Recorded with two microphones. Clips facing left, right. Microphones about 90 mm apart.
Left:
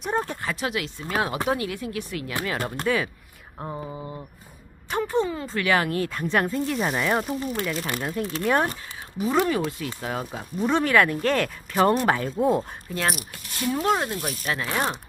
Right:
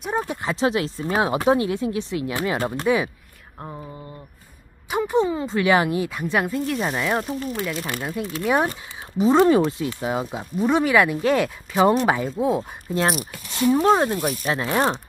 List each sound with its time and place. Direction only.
0.0 s speech: 5° right (ahead or behind)
0.4 s speech: 25° right (ahead or behind)
1.1 s speech: 20° right (ahead or behind)
3.5 s a sound: 5° left (ahead or behind)
4.9 s speech: 15° right (ahead or behind)
9.2 s speech: 25° right (ahead or behind); by 12.6 s centre (ahead or behind)
12.9 s speech: 25° right (ahead or behind)